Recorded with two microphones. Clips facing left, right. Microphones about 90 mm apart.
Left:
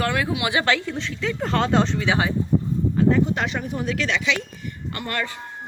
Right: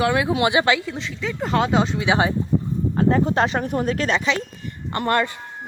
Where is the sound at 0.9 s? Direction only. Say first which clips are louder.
Left 1 dB; centre (ahead or behind).